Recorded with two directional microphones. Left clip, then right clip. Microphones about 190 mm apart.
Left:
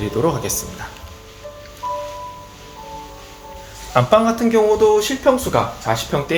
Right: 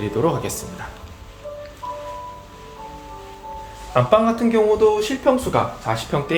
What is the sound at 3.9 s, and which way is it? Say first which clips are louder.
Speech: left 2 dB; 20° left (ahead or behind).